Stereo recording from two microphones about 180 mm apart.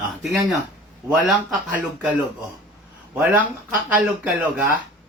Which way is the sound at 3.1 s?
10° right (ahead or behind).